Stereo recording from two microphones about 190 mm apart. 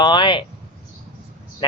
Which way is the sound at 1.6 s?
25° left (ahead or behind).